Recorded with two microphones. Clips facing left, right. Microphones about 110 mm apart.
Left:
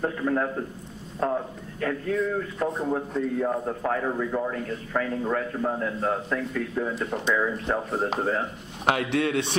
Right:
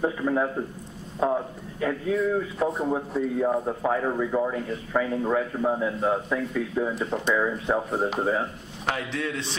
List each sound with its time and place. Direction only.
0.0 s a man's voice: 5° right (ahead or behind)
8.8 s a man's voice: 60° left (ahead or behind)